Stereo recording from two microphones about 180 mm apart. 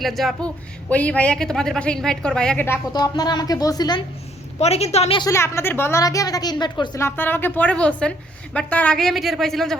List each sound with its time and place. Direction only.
0.0 s a woman's voice: centre (ahead or behind)
2.9 s a woman's voice: 25° left (ahead or behind)
4.6 s a woman's voice: 35° left (ahead or behind)
5.2 s a woman's voice: 15° left (ahead or behind)
7.0 s a woman's voice: 10° left (ahead or behind)